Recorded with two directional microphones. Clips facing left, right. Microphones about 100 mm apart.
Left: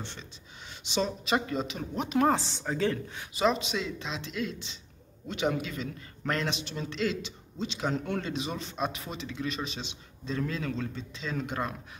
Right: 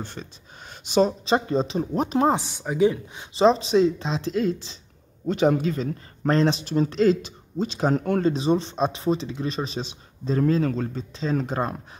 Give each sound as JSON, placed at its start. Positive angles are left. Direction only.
{"t": 0.0, "sound": "speech", "side_deg": -45}
{"t": 1.2, "sound": "a man's voice", "side_deg": -30}
{"t": 2.2, "sound": "speech", "side_deg": -15}
{"t": 3.3, "sound": "a man's voice", "side_deg": -30}